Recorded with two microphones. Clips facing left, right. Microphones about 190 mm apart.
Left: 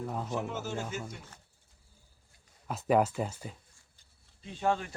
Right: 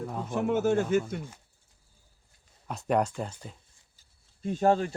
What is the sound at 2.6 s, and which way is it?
Speech, centre (ahead or behind).